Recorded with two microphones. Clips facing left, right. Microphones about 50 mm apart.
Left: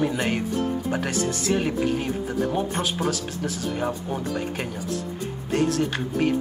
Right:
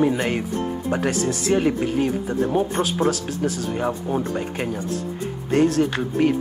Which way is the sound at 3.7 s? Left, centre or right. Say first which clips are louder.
Right 3 dB; centre.